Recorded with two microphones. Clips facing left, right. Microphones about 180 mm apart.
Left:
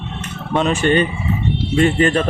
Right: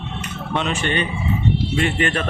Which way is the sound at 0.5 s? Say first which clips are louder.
Left 7 dB; 45° left (ahead or behind).